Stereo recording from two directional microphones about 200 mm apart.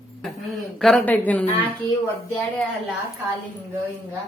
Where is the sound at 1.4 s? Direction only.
25° left (ahead or behind).